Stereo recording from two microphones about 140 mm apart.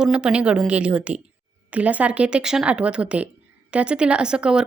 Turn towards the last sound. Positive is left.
turn(degrees=-5)  # may be behind; listen again after turning